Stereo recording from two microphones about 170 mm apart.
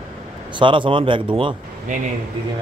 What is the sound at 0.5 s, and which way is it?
A man's voice, 30° right (ahead or behind).